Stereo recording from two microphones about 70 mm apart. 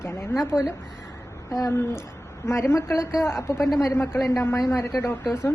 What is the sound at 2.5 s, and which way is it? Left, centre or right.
A woman's voice, left.